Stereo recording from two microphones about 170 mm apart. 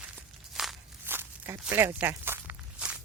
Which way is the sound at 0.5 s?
Centre (ahead or behind).